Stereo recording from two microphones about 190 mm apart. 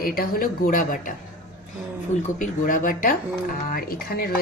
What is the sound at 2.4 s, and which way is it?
Speech, 45° left (ahead or behind).